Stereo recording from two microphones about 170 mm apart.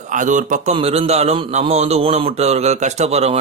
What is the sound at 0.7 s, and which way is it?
A man's voice, 35° right (ahead or behind).